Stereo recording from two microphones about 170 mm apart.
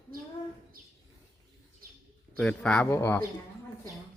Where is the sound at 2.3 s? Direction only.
5° left (ahead or behind).